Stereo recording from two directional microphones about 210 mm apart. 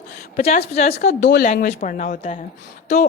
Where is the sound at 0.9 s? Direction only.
45° left (ahead or behind).